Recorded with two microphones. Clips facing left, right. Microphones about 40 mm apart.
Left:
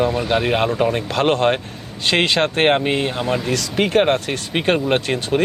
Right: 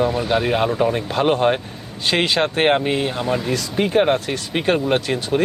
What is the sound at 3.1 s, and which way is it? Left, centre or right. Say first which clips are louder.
Speech: even; centre.